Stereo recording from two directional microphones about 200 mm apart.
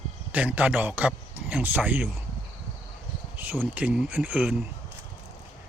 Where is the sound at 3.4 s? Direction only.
10° right (ahead or behind).